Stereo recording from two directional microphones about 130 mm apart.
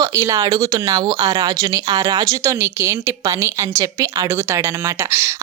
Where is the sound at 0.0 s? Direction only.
20° right (ahead or behind).